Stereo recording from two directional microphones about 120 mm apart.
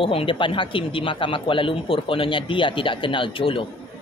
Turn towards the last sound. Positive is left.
turn(degrees=45)  # may be behind; listen again after turning